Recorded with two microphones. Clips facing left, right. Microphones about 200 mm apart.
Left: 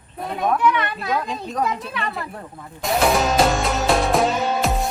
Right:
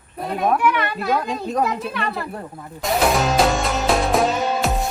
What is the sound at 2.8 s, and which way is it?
Music, centre (ahead or behind).